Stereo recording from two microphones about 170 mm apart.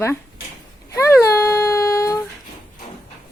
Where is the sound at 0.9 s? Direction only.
20° left (ahead or behind).